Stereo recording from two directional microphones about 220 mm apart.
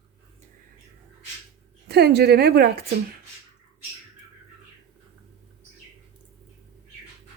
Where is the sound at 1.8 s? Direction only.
50° right (ahead or behind).